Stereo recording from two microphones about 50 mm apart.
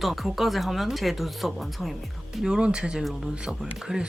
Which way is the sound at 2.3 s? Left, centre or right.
Centre.